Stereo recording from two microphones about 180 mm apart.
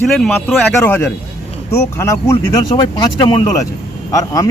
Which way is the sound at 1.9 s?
15° left (ahead or behind).